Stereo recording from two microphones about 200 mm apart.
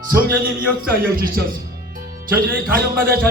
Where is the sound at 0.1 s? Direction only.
45° right (ahead or behind).